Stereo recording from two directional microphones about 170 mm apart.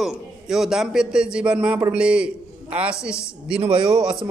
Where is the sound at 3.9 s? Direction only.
5° right (ahead or behind).